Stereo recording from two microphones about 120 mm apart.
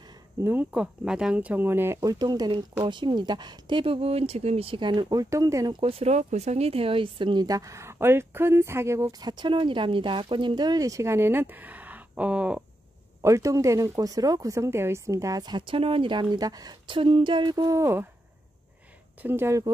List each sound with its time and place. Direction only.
0.4 s speech: 20° right (ahead or behind)
0.7 s speech: 5° right (ahead or behind); by 5.8 s 30° right (ahead or behind)
5.8 s speech: 50° right (ahead or behind); by 9.1 s 25° right (ahead or behind)
9.2 s speech: 40° right (ahead or behind); by 12.6 s 10° right (ahead or behind)
13.2 s speech: 25° right (ahead or behind)
19.2 s speech: 20° right (ahead or behind)